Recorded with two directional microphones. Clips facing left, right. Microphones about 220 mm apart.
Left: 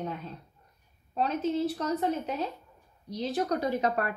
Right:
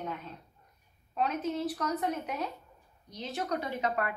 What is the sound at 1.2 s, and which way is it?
A woman's voice, 30° left (ahead or behind).